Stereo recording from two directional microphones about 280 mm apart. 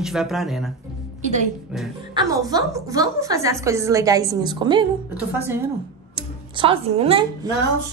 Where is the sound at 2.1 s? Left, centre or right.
Centre.